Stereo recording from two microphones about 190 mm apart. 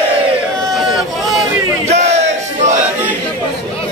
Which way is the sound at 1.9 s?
35° right (ahead or behind).